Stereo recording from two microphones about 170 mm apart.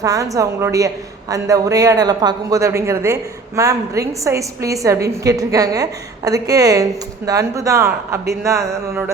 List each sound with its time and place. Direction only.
0.0 s speech: 20° right (ahead or behind)